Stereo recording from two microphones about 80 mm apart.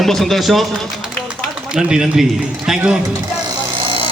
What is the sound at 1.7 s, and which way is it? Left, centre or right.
Speech, centre.